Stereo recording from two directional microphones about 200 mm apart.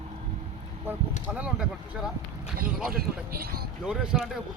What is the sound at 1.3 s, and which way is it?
Speech, 5° right (ahead or behind).